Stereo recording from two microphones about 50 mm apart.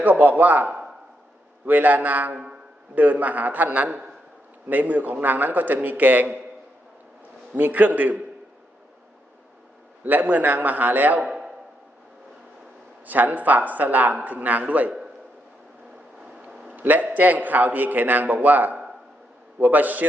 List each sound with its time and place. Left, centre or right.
0.0 s speech: right
7.5 s speech: right
10.0 s speech: right
11.2 s a sound: centre
13.1 s a man's voice: right
16.6 s a sound: right
17.2 s speech: right